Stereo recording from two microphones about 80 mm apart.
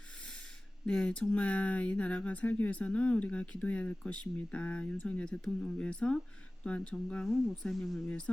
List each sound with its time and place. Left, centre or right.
0.9 s speech: centre